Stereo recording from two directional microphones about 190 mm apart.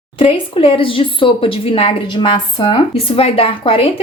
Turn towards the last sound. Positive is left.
turn(degrees=30)  # may be behind; listen again after turning